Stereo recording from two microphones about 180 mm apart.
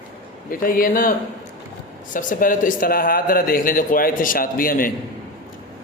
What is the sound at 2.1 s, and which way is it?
Speech, 50° left (ahead or behind).